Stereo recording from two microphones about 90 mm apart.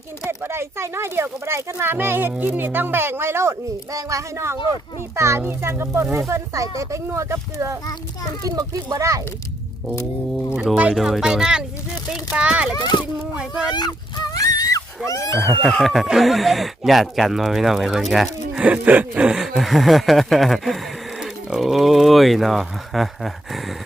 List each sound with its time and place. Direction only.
0.3 s a child's voice: 30° right (ahead or behind)
8.4 s a child's voice: 45° right (ahead or behind)
10.9 s speech: 5° right (ahead or behind)
12.7 s speech: 55° left (ahead or behind)
13.1 s speech: 10° right (ahead or behind)
13.7 s dog: 45° left (ahead or behind)
15.6 s speech: 5° left (ahead or behind)
18.6 s speech: 15° right (ahead or behind); by 23.7 s centre (ahead or behind)